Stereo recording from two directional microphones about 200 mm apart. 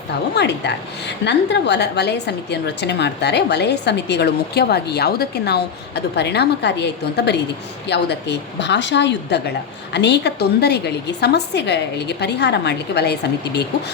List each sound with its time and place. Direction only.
0.3 s a woman's voice: 60° left (ahead or behind)